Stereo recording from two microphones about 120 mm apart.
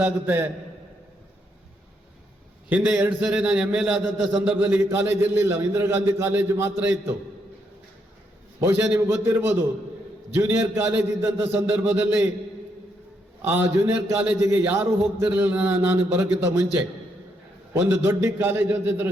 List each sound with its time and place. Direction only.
0.0 s a man's voice: 15° right (ahead or behind)
2.6 s a man's voice: 10° right (ahead or behind)
8.6 s a man's voice: 20° right (ahead or behind)
13.4 s a man's voice: 20° right (ahead or behind)
17.7 s a man's voice: 15° right (ahead or behind)